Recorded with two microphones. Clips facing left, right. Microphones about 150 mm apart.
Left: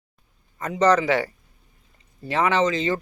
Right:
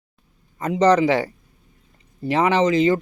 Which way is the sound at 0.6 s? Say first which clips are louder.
Right 3 dB; 30° right (ahead or behind).